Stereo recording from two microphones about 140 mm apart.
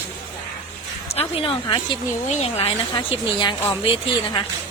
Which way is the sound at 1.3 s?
40° left (ahead or behind).